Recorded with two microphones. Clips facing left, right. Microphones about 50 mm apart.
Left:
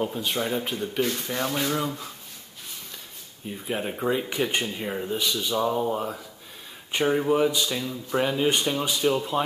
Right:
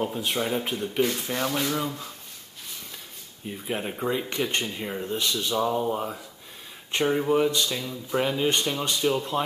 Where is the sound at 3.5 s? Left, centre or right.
Centre.